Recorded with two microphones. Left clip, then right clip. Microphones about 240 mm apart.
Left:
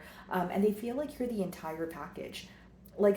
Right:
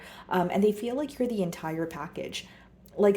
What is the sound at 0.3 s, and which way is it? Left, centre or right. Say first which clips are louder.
Speech: right 5 dB; right.